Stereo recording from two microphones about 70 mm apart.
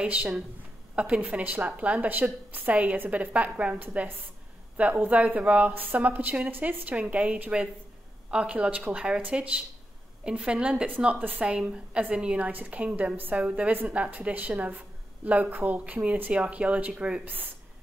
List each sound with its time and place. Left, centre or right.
0.0 s a woman's voice: centre
11.1 s a woman's voice: right